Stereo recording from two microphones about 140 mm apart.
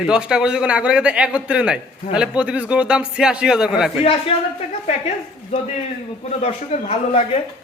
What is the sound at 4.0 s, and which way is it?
Speech, 40° left (ahead or behind).